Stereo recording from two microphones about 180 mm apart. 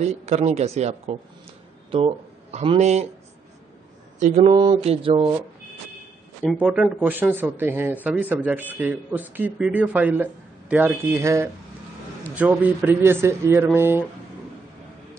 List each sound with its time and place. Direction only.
0.0 s speech: 40° right (ahead or behind)
4.2 s speech: 35° right (ahead or behind)
6.6 s a man's voice: 5° right (ahead or behind)